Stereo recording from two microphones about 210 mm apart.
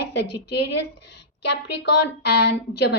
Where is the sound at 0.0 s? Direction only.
55° left (ahead or behind).